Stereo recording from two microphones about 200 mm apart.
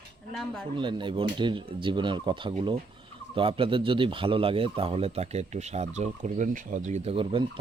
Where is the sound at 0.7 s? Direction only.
25° right (ahead or behind).